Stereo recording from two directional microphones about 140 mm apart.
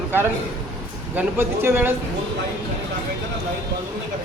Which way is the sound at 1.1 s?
15° right (ahead or behind).